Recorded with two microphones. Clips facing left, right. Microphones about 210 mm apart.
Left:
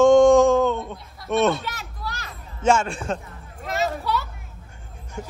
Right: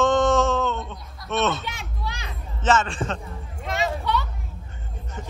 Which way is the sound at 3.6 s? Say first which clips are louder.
Left 1 dB; centre (ahead or behind).